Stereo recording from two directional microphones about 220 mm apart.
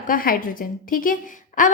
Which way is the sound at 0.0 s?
40° left (ahead or behind).